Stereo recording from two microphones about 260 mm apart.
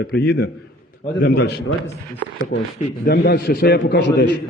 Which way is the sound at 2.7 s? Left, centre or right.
Left.